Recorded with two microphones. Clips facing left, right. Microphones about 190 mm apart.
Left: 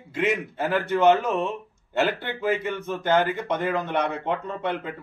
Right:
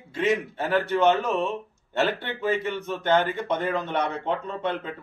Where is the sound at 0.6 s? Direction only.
Centre (ahead or behind).